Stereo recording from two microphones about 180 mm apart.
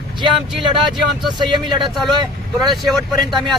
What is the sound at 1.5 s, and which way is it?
Speech, 25° right (ahead or behind).